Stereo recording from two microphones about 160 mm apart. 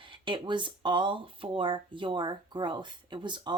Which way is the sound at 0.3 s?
30° right (ahead or behind).